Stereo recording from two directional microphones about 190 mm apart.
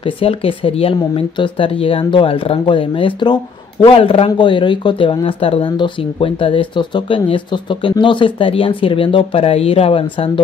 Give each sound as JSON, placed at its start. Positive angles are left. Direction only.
{"t": 0.2, "sound": "speech", "side_deg": 30}